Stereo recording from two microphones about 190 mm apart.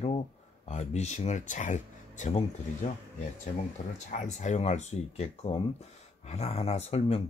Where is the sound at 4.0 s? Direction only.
40° left (ahead or behind).